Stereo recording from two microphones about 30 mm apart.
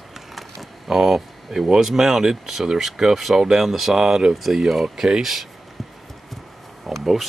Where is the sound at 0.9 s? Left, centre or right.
Centre.